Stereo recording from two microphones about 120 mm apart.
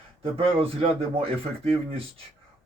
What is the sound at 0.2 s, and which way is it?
Speech, 50° right (ahead or behind).